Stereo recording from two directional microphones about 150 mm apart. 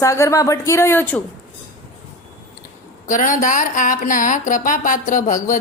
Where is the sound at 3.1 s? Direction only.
60° left (ahead or behind).